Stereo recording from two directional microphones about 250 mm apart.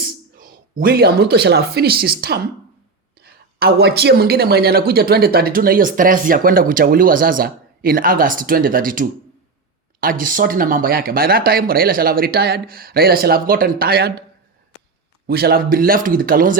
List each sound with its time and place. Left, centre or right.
0.0 s speech: right
15.3 s speech: right